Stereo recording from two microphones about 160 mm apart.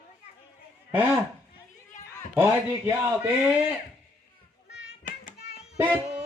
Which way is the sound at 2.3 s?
15° right (ahead or behind).